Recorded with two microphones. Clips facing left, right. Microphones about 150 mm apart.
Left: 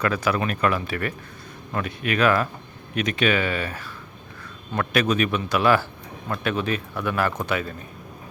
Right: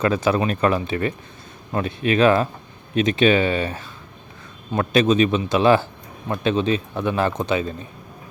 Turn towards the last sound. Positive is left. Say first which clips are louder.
# right 4 dB
turn(degrees=-25)  # may be behind; listen again after turning